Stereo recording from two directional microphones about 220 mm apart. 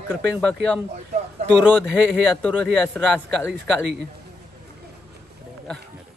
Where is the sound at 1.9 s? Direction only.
5° left (ahead or behind).